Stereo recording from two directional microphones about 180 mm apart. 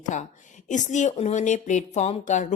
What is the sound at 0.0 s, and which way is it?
A woman's voice, 40° left (ahead or behind).